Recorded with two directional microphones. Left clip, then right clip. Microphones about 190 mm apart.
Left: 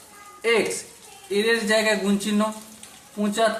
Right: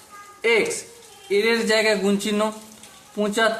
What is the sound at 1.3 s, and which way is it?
A man's voice, 45° right (ahead or behind).